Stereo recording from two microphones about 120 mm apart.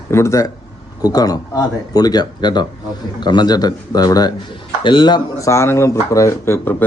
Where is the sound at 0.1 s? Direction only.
25° left (ahead or behind).